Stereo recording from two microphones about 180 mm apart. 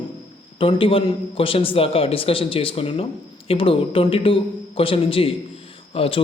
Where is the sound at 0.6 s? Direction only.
30° left (ahead or behind).